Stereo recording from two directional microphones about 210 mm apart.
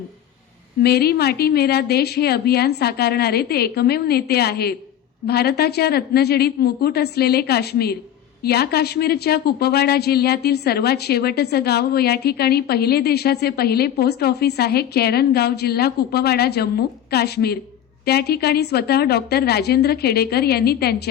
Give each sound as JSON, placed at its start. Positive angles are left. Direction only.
{"t": 0.8, "sound": "speech", "side_deg": 50}